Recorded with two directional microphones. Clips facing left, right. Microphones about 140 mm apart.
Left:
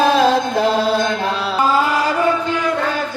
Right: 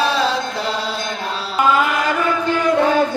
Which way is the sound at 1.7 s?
30° left (ahead or behind).